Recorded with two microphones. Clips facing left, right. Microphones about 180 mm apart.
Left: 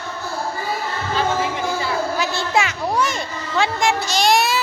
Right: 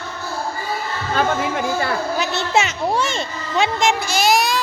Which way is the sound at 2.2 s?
20° right (ahead or behind).